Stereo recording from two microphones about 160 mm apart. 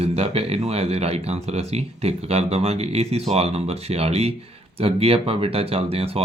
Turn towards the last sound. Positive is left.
turn(degrees=-40)  # may be behind; listen again after turning